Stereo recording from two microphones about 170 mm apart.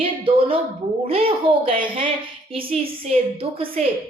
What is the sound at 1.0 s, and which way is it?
A woman's voice, 35° right (ahead or behind).